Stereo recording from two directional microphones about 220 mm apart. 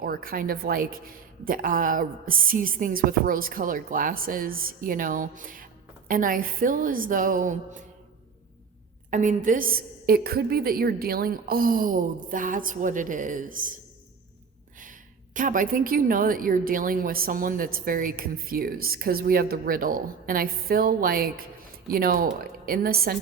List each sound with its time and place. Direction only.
0.0 s a woman's voice: 40° right (ahead or behind)
9.0 s a woman's voice: 35° right (ahead or behind)
14.8 s a woman's voice: 35° right (ahead or behind)